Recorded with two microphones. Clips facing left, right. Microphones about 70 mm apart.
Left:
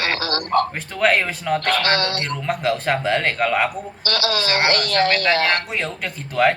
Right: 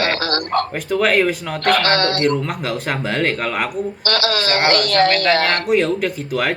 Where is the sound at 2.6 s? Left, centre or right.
Centre.